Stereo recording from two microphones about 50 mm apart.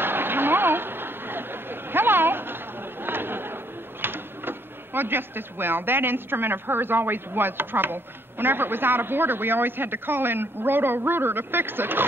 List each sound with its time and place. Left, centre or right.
0.0 s chatter: right
4.0 s speech: right